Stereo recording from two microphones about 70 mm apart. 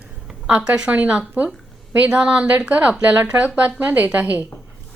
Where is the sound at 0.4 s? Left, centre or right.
Centre.